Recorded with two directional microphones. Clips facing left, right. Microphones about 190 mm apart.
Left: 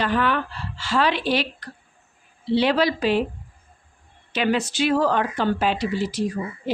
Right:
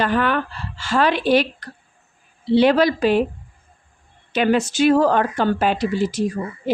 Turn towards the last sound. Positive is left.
turn(degrees=-50)  # may be behind; listen again after turning